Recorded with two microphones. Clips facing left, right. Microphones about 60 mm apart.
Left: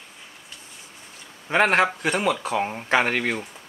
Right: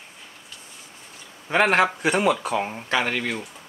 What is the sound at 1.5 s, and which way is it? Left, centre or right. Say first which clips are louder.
Speech: even; centre.